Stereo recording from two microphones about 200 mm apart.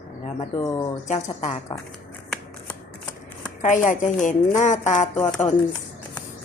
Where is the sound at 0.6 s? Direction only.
15° left (ahead or behind).